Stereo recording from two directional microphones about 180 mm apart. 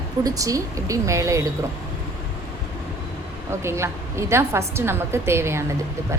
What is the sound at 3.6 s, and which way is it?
A woman's voice, 15° right (ahead or behind).